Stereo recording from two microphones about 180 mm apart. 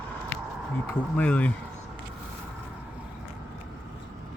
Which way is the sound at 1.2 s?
10° left (ahead or behind).